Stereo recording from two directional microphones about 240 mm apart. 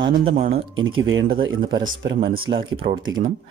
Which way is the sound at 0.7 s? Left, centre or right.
Right.